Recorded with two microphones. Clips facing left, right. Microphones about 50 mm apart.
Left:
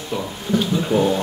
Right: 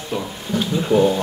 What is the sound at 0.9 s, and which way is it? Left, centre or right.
Speech, right.